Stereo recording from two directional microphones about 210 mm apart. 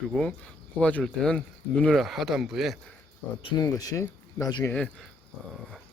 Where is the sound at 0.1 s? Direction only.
5° left (ahead or behind).